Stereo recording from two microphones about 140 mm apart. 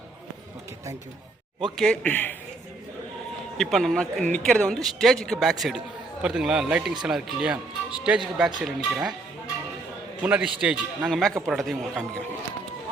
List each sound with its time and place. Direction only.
1.6 s speech: 5° left (ahead or behind)
3.6 s speech: centre (ahead or behind)
10.2 s speech: 10° right (ahead or behind)